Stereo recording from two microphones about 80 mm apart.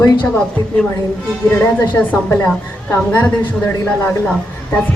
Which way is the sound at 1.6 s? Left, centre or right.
Left.